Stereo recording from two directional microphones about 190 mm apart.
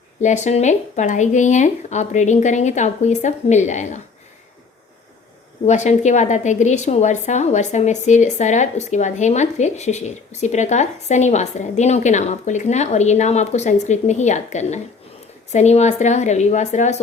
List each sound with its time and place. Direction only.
0.2 s a woman's voice: 40° left (ahead or behind)
5.6 s a woman's voice: 35° left (ahead or behind)